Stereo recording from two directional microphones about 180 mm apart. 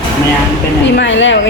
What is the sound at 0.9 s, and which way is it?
Speech, 90° left.